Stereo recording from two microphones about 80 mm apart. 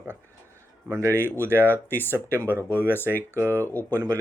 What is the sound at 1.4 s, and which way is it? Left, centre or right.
Speech, right.